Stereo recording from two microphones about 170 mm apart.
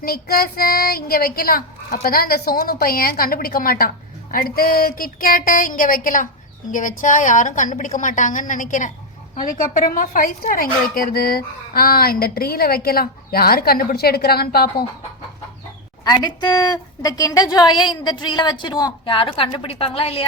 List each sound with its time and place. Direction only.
0.0 s a woman's voice: 65° left (ahead or behind)
16.0 s a woman's voice: 25° left (ahead or behind)